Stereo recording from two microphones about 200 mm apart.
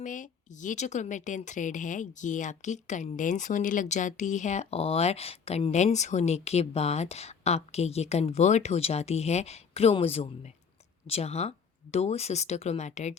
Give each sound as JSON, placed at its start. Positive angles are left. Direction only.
{"t": 0.0, "sound": "a woman's voice", "side_deg": 40}